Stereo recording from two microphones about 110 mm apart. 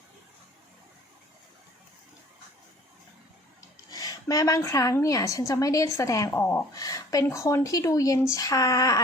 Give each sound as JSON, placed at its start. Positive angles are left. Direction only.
{"t": 3.9, "sound": "a woman's voice", "side_deg": 35}